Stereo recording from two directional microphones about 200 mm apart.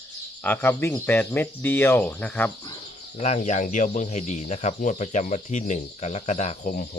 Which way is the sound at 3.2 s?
35° left (ahead or behind).